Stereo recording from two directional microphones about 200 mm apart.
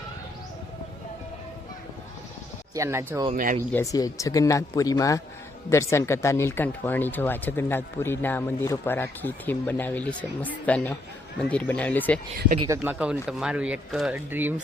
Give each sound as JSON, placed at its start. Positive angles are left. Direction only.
{"t": 2.7, "sound": "speech", "side_deg": -15}
{"t": 3.3, "sound": "speech", "side_deg": -45}
{"t": 3.7, "sound": "speech", "side_deg": 15}
{"t": 12.6, "sound": "speech", "side_deg": -10}